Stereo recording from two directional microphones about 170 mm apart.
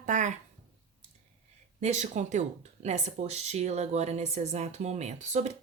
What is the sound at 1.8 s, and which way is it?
A woman's voice, 40° right (ahead or behind).